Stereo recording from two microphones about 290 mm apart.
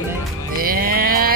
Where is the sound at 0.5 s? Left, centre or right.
Right.